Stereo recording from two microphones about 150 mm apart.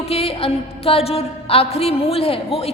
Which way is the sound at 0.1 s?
40° left (ahead or behind).